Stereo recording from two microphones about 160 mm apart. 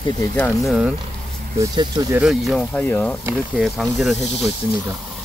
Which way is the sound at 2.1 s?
Centre (ahead or behind).